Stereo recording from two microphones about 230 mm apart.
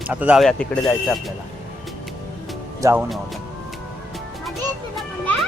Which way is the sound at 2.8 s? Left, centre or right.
Centre.